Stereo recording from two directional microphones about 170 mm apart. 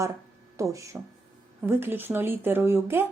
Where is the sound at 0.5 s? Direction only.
20° right (ahead or behind).